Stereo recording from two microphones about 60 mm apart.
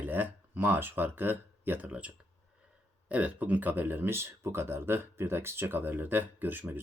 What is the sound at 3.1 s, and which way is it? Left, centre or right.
Speech, right.